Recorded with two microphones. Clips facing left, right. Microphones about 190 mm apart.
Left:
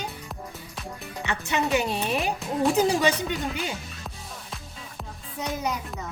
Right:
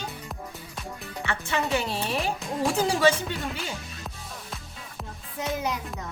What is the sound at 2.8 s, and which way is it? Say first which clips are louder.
Speech: left 1 dB; 15° left (ahead or behind).